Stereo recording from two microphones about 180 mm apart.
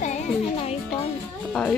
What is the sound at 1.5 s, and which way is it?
Speech, 5° left (ahead or behind).